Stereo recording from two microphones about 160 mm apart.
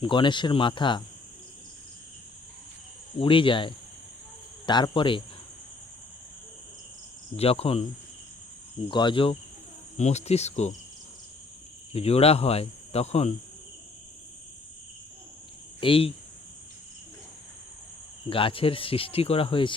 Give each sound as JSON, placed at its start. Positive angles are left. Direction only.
{"t": 0.0, "sound": "speech", "side_deg": 30}
{"t": 3.2, "sound": "speech", "side_deg": 30}
{"t": 7.3, "sound": "speech", "side_deg": 40}
{"t": 8.9, "sound": "speech", "side_deg": 30}
{"t": 11.9, "sound": "speech", "side_deg": 40}
{"t": 15.8, "sound": "speech", "side_deg": 35}
{"t": 18.3, "sound": "speech", "side_deg": 35}